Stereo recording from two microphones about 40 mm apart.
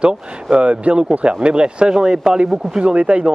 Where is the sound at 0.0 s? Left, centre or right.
Right.